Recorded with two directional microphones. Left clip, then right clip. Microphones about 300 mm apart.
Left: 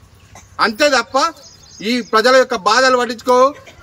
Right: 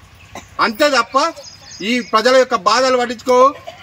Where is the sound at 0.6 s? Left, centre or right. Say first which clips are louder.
Even; centre.